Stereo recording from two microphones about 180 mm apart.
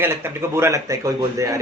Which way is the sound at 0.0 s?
15° right (ahead or behind).